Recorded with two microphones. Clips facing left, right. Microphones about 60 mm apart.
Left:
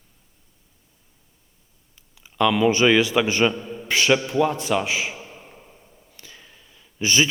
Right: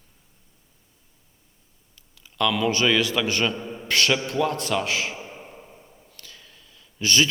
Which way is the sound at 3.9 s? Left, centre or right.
Centre.